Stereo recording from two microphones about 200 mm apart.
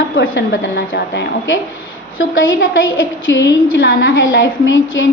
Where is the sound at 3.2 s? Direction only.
70° left (ahead or behind).